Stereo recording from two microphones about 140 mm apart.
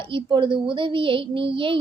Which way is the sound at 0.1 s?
35° right (ahead or behind).